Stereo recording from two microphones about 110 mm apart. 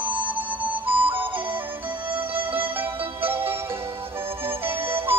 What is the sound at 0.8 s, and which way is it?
Music, 15° right (ahead or behind).